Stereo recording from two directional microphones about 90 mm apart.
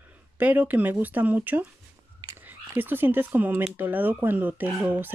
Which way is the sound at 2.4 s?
25° right (ahead or behind).